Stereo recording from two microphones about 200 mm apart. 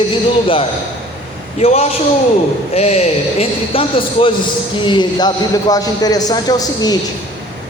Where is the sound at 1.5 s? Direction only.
30° left (ahead or behind).